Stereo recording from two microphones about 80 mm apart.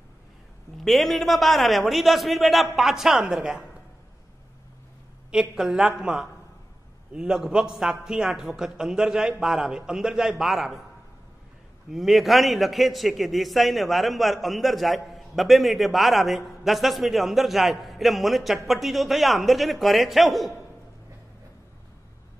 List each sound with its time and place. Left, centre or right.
0.7 s a man's voice: centre
5.3 s a woman's voice: centre
11.9 s a man's voice: centre